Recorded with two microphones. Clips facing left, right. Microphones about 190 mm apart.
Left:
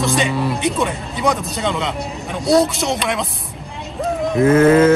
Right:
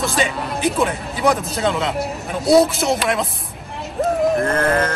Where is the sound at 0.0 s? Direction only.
Centre (ahead or behind).